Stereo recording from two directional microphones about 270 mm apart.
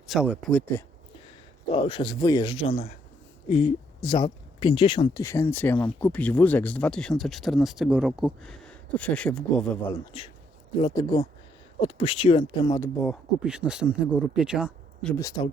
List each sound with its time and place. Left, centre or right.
0.1 s speech: centre
1.7 s speech: centre
10.1 s speech: left; by 15.1 s centre
15.2 s speech: centre